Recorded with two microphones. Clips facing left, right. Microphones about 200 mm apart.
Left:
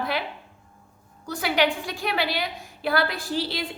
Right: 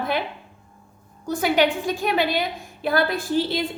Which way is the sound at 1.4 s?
50° right (ahead or behind).